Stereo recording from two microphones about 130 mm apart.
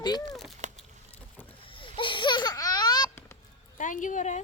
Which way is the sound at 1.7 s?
40° left (ahead or behind).